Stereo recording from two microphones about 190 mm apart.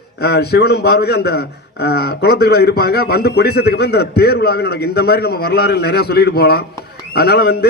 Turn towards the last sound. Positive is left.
turn(degrees=55)  # may be behind; listen again after turning